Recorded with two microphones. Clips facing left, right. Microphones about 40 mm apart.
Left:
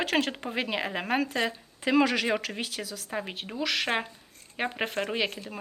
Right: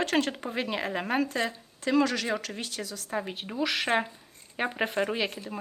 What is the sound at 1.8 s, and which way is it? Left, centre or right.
Speech, centre.